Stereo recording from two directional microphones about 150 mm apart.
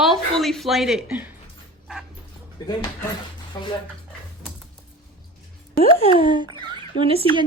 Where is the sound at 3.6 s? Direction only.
25° left (ahead or behind).